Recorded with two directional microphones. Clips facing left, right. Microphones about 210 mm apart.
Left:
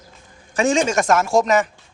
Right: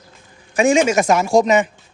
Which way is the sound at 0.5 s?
10° right (ahead or behind).